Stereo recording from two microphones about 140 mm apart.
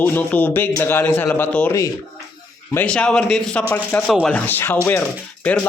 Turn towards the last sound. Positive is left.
turn(degrees=10)  # may be behind; listen again after turning